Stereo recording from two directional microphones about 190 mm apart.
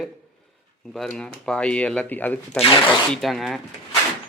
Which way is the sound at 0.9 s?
5° left (ahead or behind).